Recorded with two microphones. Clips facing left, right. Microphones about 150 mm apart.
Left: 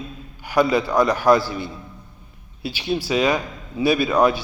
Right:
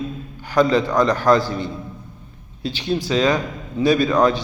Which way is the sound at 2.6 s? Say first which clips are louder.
Right 2 dB; 10° left (ahead or behind).